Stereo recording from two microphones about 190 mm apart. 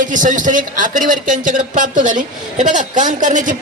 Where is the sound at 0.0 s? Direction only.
45° right (ahead or behind).